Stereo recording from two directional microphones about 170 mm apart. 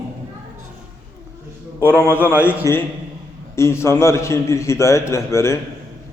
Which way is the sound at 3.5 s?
15° left (ahead or behind).